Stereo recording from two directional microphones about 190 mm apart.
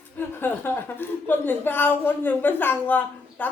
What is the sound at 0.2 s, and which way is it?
A woman's voice, 10° left (ahead or behind).